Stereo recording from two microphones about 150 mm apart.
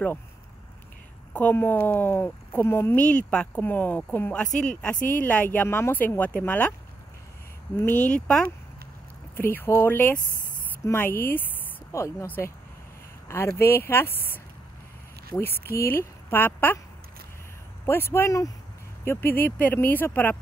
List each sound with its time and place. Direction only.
1.3 s speech: 10° left (ahead or behind)
7.8 s speech: 10° left (ahead or behind)
13.3 s speech: 15° left (ahead or behind)
17.8 s speech: 15° left (ahead or behind)